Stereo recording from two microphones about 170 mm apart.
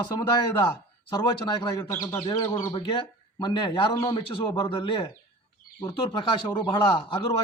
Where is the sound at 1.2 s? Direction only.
25° left (ahead or behind).